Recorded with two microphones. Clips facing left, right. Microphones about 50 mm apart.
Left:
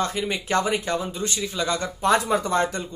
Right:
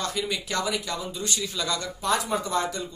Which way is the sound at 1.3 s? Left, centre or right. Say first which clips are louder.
Left 4 dB; left.